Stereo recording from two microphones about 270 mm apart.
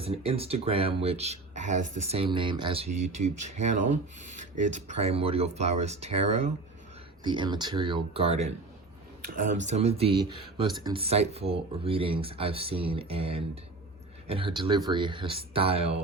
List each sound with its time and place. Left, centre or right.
0.0 s speech: right